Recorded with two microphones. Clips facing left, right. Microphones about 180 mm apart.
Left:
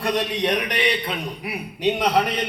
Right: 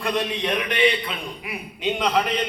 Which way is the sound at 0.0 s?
40° left (ahead or behind).